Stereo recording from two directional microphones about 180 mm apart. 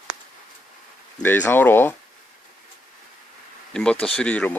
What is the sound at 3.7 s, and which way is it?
Speech, 5° left (ahead or behind).